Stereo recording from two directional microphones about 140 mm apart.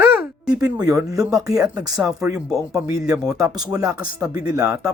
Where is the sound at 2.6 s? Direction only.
25° right (ahead or behind).